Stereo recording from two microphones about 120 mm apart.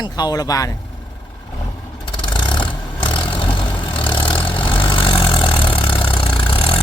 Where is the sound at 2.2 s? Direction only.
40° left (ahead or behind).